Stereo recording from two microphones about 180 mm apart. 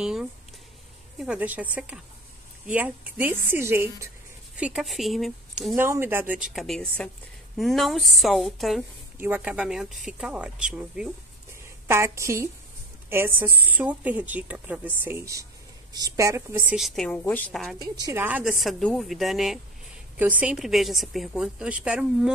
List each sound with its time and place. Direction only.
0.0 s a woman's voice: 5° right (ahead or behind)
18.0 s a woman's voice: 10° right (ahead or behind)